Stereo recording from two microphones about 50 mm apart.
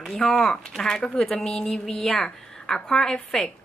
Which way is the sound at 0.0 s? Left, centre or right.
Centre.